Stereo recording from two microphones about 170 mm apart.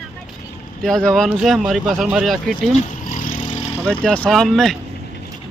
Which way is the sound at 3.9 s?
10° left (ahead or behind).